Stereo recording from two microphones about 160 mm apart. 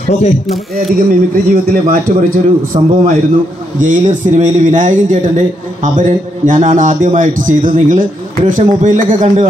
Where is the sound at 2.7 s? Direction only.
40° right (ahead or behind).